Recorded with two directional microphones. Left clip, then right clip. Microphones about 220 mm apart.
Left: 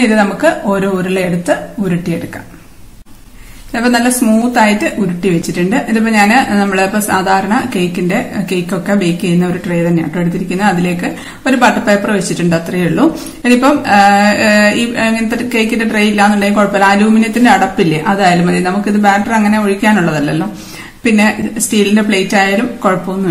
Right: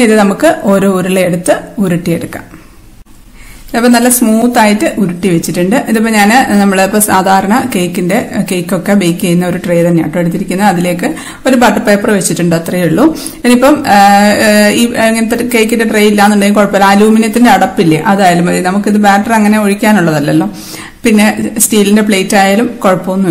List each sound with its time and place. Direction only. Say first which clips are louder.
0.1 s speech: right 3 dB; 45° right (ahead or behind)
3.7 s speech: right 4 dB; 45° right (ahead or behind)